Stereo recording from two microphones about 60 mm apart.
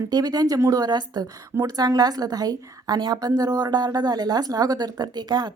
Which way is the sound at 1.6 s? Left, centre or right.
Right.